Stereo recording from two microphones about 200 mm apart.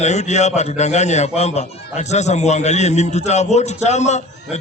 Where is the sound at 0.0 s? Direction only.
35° left (ahead or behind).